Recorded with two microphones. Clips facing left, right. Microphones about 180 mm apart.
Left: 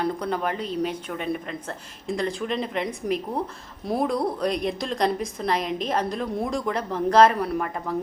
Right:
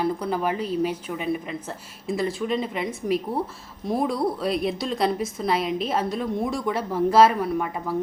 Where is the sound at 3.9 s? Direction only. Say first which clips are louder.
Even; centre (ahead or behind).